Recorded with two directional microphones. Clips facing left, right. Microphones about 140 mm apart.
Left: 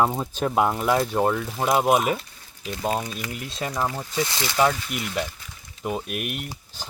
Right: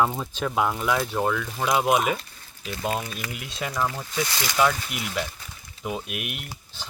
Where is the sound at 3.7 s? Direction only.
20° left (ahead or behind).